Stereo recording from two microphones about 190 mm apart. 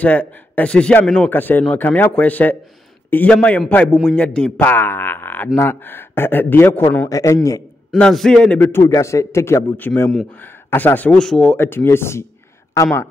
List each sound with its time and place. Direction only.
0.0 s a man's voice: 10° left (ahead or behind)
7.9 s a man's voice: centre (ahead or behind)